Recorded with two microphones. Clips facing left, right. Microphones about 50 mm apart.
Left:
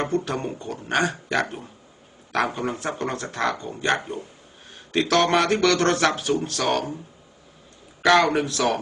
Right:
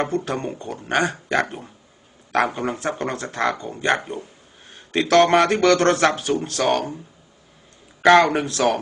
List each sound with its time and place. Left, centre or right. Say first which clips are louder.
0.3 s speech: right 2 dB; right
8.0 s speech: right 4 dB; right